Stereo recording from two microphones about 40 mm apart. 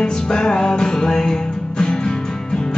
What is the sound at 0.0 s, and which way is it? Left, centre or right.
Music, left.